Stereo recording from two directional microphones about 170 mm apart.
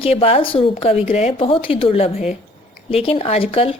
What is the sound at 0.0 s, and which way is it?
Speech, 35° left (ahead or behind).